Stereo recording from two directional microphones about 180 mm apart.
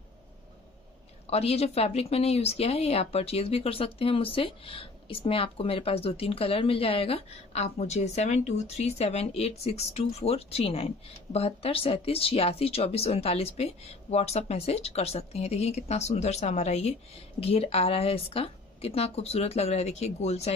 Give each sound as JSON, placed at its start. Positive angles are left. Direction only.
{"t": 1.3, "sound": "speech", "side_deg": 35}